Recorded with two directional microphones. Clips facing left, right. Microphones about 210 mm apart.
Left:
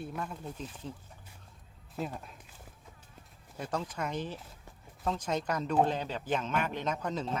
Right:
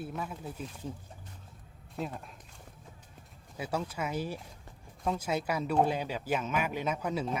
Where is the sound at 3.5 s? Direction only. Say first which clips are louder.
Right 1 dB; 10° right (ahead or behind).